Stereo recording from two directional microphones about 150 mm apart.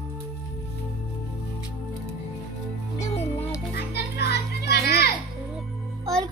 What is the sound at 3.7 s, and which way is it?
Children playing, 90° left.